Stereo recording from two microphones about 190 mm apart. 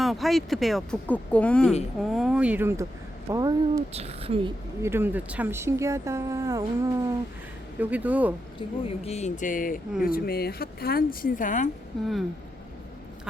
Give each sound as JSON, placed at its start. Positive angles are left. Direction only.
{"t": 0.0, "sound": "speech", "side_deg": 0}
{"t": 3.9, "sound": "a woman's voice", "side_deg": -30}
{"t": 4.8, "sound": "speech", "side_deg": -10}
{"t": 8.5, "sound": "speech", "side_deg": 30}